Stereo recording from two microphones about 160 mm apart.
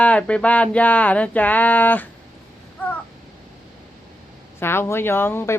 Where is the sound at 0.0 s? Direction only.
10° left (ahead or behind).